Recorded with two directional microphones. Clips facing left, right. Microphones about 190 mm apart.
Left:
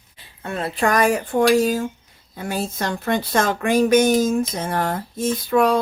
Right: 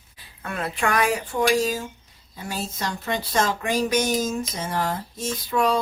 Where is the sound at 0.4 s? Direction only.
30° left (ahead or behind).